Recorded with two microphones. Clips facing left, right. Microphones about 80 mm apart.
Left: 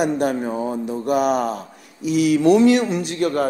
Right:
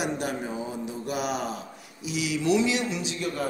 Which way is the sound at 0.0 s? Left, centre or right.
Left.